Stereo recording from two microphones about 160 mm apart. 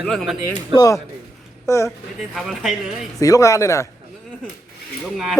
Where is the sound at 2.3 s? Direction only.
Centre (ahead or behind).